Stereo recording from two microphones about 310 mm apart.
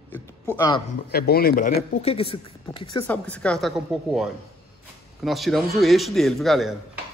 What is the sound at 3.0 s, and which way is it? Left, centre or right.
A man's voice, centre.